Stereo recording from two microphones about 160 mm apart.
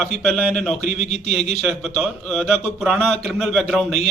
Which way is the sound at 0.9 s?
45° left (ahead or behind).